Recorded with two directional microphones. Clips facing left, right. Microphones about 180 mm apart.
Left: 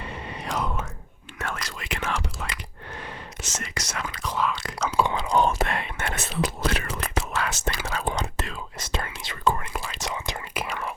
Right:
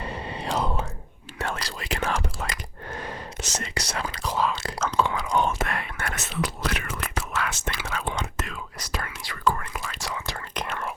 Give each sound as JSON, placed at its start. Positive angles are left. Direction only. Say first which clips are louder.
{"t": 0.0, "sound": "whispering", "louder": "right 3 dB", "side_deg": -35}
{"t": 4.9, "sound": "whispering", "louder": "left 1 dB", "side_deg": 10}
{"t": 5.1, "sound": "whispering", "louder": "left 2 dB", "side_deg": 30}
{"t": 10.7, "sound": "whispering", "louder": "right 1 dB", "side_deg": 0}